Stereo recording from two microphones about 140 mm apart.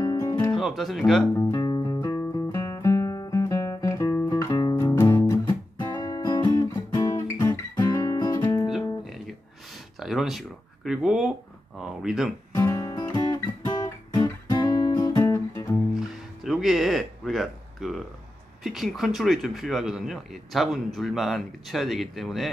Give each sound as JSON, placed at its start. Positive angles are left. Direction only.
{"t": 0.0, "sound": "music", "side_deg": 25}
{"t": 0.6, "sound": "speech", "side_deg": 0}
{"t": 1.3, "sound": "music", "side_deg": 20}
{"t": 5.8, "sound": "music", "side_deg": 30}
{"t": 9.9, "sound": "a sound", "side_deg": 0}
{"t": 11.8, "sound": "speech", "side_deg": -5}
{"t": 12.5, "sound": "music", "side_deg": 25}
{"t": 13.1, "sound": "guitar", "side_deg": 30}
{"t": 16.4, "sound": "a sound", "side_deg": 0}
{"t": 18.6, "sound": "speech", "side_deg": 0}